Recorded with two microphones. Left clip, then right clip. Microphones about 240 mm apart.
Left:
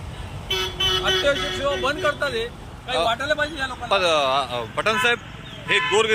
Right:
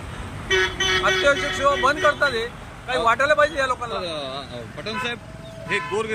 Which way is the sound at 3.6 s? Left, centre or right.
Centre.